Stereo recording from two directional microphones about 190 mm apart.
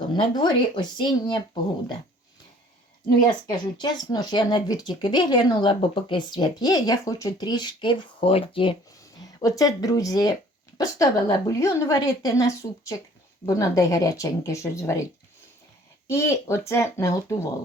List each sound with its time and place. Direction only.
0.0 s speech: 25° left (ahead or behind)
3.1 s speech: 25° left (ahead or behind)
9.2 s a woman's voice: 20° left (ahead or behind)
16.0 s a woman's voice: 15° left (ahead or behind)